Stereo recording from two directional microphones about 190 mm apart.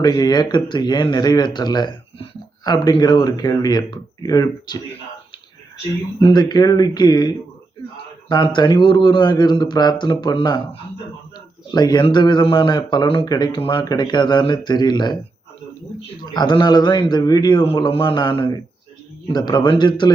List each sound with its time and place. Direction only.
0.0 s speech: 20° left (ahead or behind)
6.2 s speech: 25° left (ahead or behind)
11.7 s speech: 20° left (ahead or behind)
16.2 s speech: 20° left (ahead or behind)